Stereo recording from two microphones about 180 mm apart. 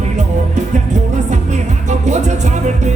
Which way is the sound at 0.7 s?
40° right (ahead or behind).